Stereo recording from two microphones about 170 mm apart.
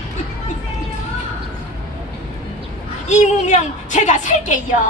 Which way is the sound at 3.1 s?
45° left (ahead or behind).